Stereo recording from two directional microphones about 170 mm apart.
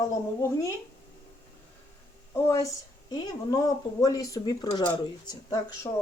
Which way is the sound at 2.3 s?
20° left (ahead or behind).